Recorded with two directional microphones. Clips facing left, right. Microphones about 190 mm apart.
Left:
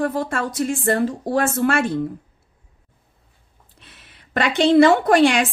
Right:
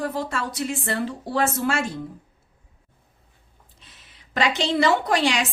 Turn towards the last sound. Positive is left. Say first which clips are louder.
# left 7 dB
turn(degrees=55)  # may be behind; listen again after turning